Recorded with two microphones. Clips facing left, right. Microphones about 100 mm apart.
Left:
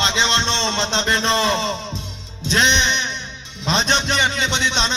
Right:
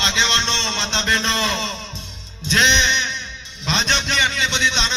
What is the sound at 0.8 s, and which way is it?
Speech, 35° left (ahead or behind).